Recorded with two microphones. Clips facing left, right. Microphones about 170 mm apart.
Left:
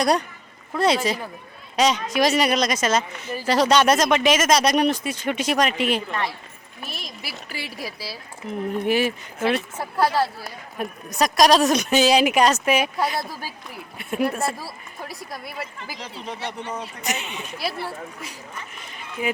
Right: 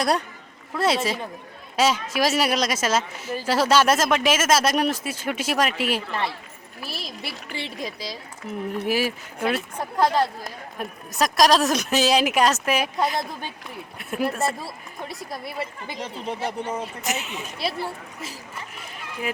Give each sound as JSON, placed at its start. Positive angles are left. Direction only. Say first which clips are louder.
{"t": 0.7, "sound": "speech", "louder": "left 2 dB", "side_deg": -5}
{"t": 7.5, "sound": "speech", "louder": "right 2 dB", "side_deg": -25}
{"t": 7.9, "sound": "speech", "louder": "right 1 dB", "side_deg": 5}
{"t": 8.4, "sound": "speech", "louder": "left 3 dB", "side_deg": -5}